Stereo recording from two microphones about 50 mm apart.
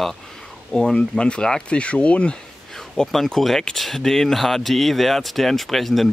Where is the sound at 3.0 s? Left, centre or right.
Centre.